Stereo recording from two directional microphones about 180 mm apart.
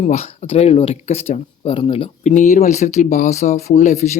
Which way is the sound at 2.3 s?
45° left (ahead or behind).